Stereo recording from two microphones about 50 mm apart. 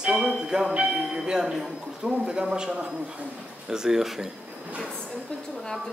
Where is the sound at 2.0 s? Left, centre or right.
Centre.